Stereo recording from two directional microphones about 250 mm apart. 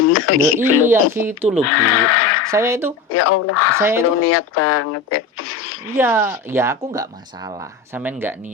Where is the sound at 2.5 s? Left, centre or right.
Centre.